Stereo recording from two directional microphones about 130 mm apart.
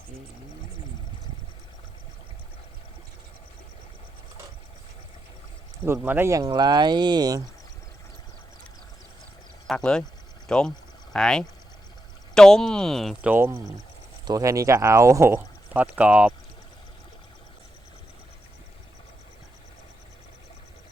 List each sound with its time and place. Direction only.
5.8 s speech: 15° right (ahead or behind)
9.6 s speech: 5° left (ahead or behind)
13.2 s speech: 15° right (ahead or behind)